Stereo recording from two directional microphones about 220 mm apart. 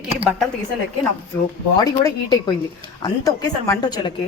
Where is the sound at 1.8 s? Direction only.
15° left (ahead or behind).